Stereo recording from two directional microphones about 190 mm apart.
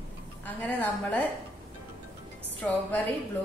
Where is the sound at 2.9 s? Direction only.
10° left (ahead or behind).